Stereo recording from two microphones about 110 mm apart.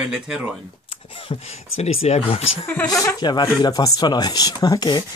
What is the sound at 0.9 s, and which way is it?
Speech, 55° left (ahead or behind).